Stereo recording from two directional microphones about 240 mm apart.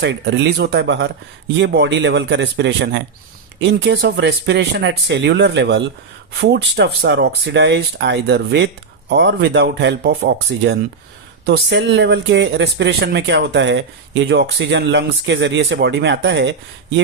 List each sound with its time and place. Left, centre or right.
0.0 s speech: right